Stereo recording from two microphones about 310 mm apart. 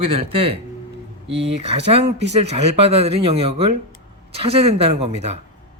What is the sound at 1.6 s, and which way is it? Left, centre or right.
Speech, centre.